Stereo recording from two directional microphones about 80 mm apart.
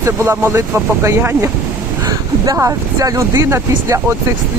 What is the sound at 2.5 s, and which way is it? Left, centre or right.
Speech, right.